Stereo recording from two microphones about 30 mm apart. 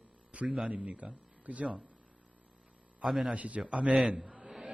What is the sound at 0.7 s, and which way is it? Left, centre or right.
Speech, right.